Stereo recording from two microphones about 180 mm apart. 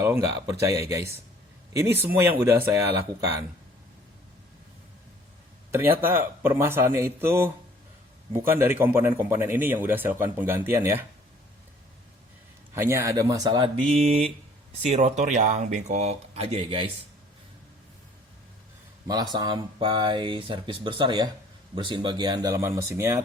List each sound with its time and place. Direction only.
0.0 s speech: 15° right (ahead or behind)
5.7 s speech: 10° right (ahead or behind)
12.7 s speech: 15° right (ahead or behind); by 16.9 s 30° right (ahead or behind)
19.0 s speech: 20° right (ahead or behind)